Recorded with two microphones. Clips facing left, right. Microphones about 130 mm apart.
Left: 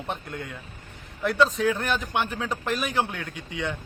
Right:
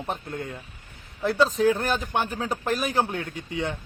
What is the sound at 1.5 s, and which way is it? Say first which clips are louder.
A man's voice: right 3 dB; 35° right (ahead or behind).